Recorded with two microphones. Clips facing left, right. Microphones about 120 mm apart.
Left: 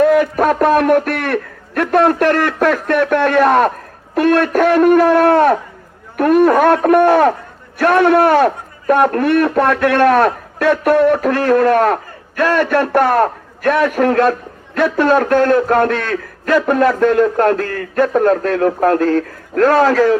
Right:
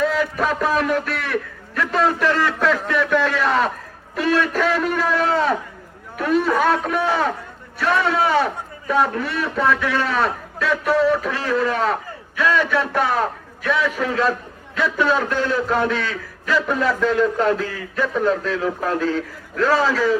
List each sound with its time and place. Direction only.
0.0 s a man's voice: 55° left (ahead or behind)